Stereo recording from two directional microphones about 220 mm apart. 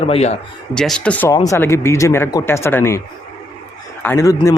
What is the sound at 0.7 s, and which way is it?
A man's voice, 5° left (ahead or behind).